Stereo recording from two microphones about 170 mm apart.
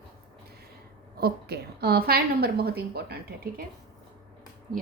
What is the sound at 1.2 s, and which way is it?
A woman's voice, 70° right (ahead or behind).